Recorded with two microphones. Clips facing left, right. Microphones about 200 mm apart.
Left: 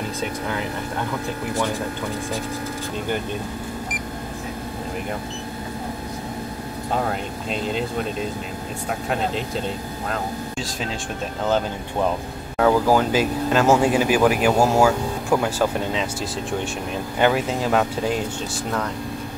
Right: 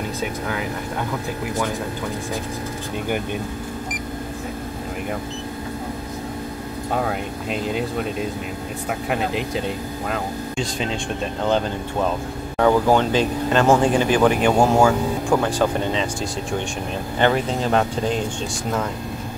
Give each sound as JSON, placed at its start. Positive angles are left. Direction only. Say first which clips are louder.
{"t": 7.0, "sound": "speech", "louder": "right 1 dB", "side_deg": -5}
{"t": 10.0, "sound": "speech", "louder": "right 1 dB", "side_deg": 0}
{"t": 17.2, "sound": "speech", "louder": "even", "side_deg": 5}